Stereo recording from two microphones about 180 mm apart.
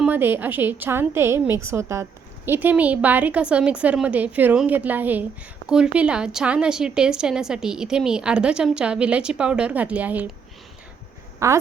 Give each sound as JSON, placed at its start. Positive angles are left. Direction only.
{"t": 0.0, "sound": "a woman's voice", "side_deg": -10}
{"t": 11.3, "sound": "speech", "side_deg": -15}